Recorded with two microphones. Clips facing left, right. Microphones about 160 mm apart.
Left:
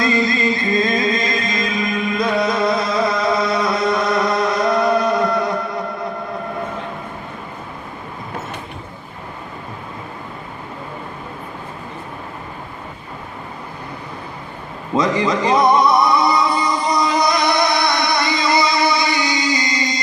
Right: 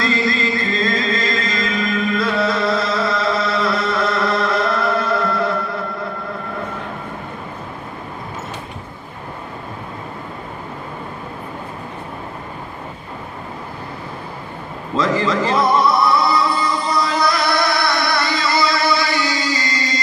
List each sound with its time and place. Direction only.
0.0 s music: 20° left (ahead or behind)
14.9 s music: 15° left (ahead or behind)